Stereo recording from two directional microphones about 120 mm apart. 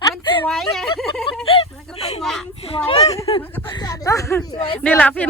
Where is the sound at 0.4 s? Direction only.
Centre (ahead or behind).